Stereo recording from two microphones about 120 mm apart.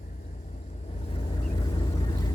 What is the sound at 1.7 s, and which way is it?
Vehicle, 40° left (ahead or behind).